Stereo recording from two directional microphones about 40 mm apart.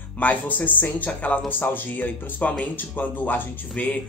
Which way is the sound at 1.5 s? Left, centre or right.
Left.